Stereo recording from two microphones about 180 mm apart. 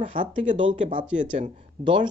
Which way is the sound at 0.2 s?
45° right (ahead or behind).